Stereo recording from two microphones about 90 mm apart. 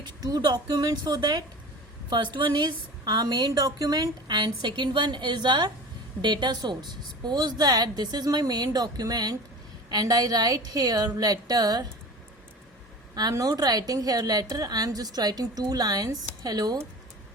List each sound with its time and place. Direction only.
0.0 s a woman's voice: 45° right (ahead or behind)
13.1 s a woman's voice: 45° right (ahead or behind)